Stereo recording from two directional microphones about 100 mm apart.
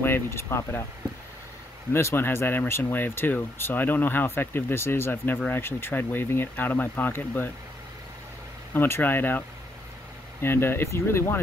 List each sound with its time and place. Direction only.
0.0 s speech: 25° left (ahead or behind)
1.9 s speech: 25° left (ahead or behind)
8.7 s speech: 20° left (ahead or behind)
10.4 s speech: 25° left (ahead or behind)